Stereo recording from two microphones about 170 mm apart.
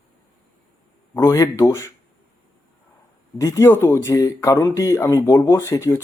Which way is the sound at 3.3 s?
15° left (ahead or behind).